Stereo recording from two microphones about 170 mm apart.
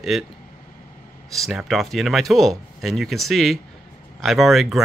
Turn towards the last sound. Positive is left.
turn(degrees=0)  # may be behind; listen again after turning